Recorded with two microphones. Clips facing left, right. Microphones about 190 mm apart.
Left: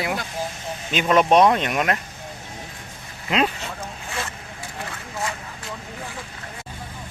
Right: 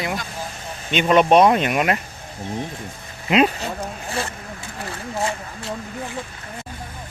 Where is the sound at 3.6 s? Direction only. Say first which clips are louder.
Right 5 dB; 35° right (ahead or behind).